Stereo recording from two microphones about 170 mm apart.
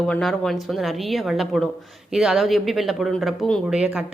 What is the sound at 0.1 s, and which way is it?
Speech, centre (ahead or behind).